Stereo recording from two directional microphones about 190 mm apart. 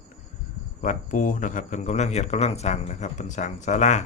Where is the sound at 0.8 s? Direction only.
40° left (ahead or behind).